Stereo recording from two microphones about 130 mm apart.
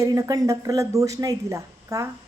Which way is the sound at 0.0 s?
25° right (ahead or behind).